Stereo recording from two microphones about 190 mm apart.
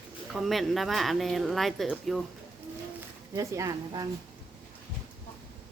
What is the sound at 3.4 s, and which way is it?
Speech, 15° right (ahead or behind).